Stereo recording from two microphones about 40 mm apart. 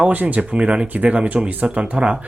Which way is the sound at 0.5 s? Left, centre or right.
Right.